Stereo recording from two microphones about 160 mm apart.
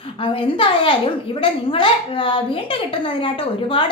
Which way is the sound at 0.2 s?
35° left (ahead or behind).